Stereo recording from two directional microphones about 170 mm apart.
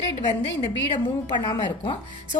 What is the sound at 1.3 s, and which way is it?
Speech, 25° left (ahead or behind).